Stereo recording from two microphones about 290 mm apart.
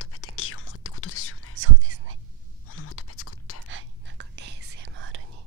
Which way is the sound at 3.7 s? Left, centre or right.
Right.